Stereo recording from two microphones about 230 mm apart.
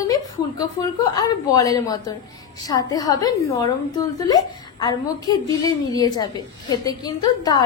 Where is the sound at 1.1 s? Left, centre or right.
Centre.